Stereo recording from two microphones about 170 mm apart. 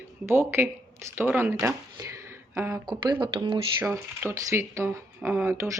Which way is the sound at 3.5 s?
15° right (ahead or behind).